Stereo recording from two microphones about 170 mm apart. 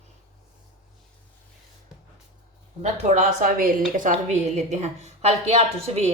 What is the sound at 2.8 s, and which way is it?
A woman's voice, 40° right (ahead or behind).